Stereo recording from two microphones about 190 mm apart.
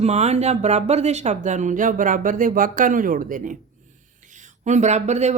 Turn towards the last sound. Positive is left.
turn(degrees=-35)  # may be behind; listen again after turning